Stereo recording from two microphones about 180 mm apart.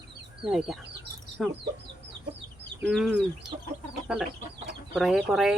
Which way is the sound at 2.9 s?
Centre (ahead or behind).